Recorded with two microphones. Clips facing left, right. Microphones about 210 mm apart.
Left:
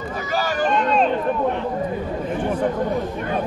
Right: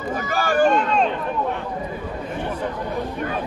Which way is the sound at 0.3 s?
50° right (ahead or behind).